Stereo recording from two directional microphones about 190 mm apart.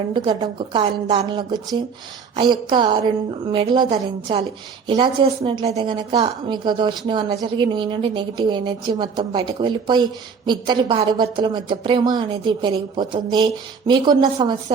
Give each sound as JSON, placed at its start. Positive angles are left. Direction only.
{"t": 0.1, "sound": "a woman's voice", "side_deg": -25}